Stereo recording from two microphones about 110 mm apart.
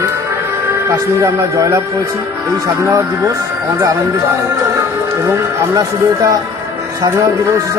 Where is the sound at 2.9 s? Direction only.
25° right (ahead or behind).